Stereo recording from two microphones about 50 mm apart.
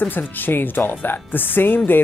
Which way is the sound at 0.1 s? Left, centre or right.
Left.